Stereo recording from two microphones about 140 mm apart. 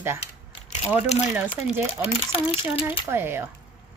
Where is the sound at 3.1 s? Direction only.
15° right (ahead or behind).